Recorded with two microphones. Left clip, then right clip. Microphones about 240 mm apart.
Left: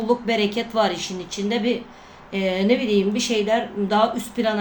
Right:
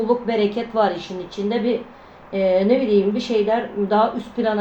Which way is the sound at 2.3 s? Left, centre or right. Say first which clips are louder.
Right 6 dB; left.